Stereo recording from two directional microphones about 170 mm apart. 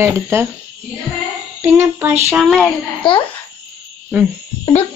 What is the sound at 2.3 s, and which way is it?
Speech, 5° right (ahead or behind).